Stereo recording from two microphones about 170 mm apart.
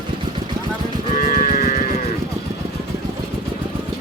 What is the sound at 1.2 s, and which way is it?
Cattle, 55° left (ahead or behind).